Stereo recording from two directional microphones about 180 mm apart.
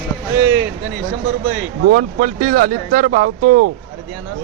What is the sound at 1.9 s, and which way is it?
Speech, 55° right (ahead or behind).